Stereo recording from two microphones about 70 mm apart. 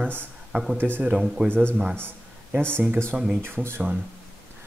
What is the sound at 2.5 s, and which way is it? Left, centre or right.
Speech, right.